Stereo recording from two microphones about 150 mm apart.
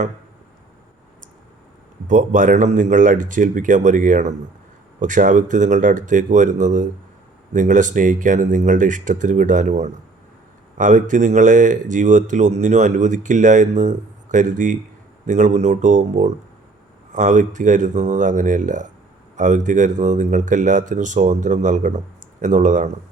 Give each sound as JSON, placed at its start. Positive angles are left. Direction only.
{"t": 2.0, "sound": "speech", "side_deg": -60}